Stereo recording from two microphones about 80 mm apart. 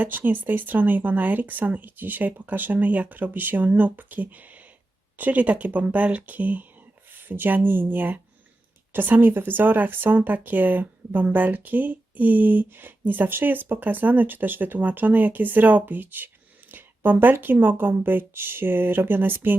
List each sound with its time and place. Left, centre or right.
0.0 s speech: right